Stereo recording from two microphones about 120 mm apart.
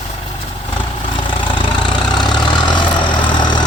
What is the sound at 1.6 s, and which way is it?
Vehicle, 40° left (ahead or behind).